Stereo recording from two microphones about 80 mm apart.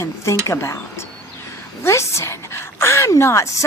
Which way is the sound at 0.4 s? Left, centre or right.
Left.